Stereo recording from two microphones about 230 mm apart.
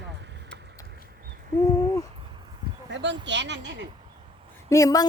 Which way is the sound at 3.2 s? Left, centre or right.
Right.